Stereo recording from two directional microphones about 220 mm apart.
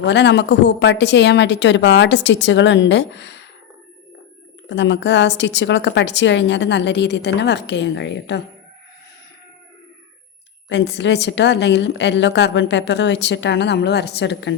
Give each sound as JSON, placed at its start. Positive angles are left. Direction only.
{"t": 0.0, "sound": "a woman's voice", "side_deg": 50}
{"t": 4.7, "sound": "a woman's voice", "side_deg": 55}
{"t": 10.7, "sound": "a woman's voice", "side_deg": 50}